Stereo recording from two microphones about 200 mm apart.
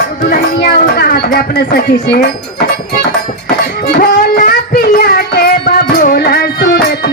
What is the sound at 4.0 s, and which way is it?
Music, 45° left (ahead or behind).